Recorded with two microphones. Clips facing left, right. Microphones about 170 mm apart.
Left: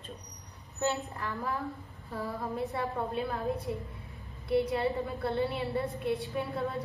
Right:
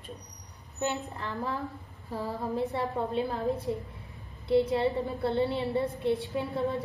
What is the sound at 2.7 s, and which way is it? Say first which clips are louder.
A woman's voice: right 3 dB; 20° right (ahead or behind).